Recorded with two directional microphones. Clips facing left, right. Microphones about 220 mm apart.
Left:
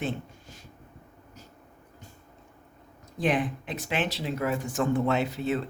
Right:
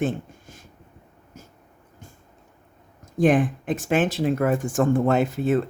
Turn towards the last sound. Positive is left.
turn(degrees=-50)  # may be behind; listen again after turning